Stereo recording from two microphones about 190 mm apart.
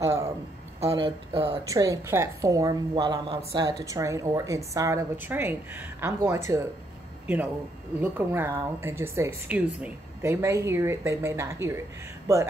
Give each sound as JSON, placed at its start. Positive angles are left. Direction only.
{"t": 0.0, "sound": "a sound", "side_deg": -15}
{"t": 0.7, "sound": "speech", "side_deg": -30}
{"t": 1.7, "sound": "a woman's voice", "side_deg": -15}
{"t": 8.0, "sound": "a woman's voice", "side_deg": -10}